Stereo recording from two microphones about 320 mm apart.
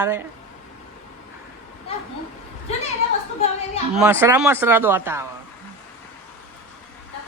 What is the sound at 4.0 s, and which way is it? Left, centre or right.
Speech, centre.